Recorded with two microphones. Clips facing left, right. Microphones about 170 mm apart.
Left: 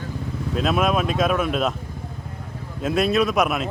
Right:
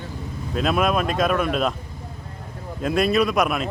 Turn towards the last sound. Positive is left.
turn(degrees=0)  # may be behind; listen again after turning